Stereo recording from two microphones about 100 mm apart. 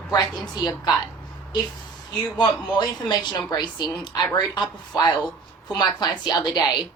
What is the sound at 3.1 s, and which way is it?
A woman's voice, 45° left (ahead or behind).